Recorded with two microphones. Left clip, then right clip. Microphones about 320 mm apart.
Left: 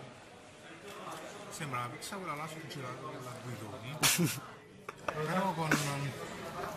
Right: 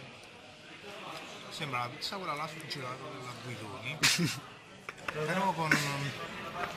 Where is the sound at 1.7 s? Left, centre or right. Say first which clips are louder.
Right 3 dB; centre.